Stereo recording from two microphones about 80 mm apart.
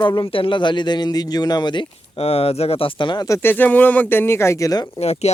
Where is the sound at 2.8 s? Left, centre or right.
Left.